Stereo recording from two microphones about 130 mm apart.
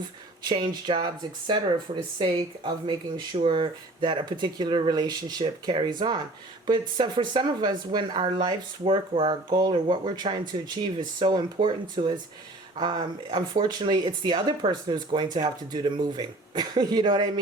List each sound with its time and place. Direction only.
0.4 s speech: 35° right (ahead or behind)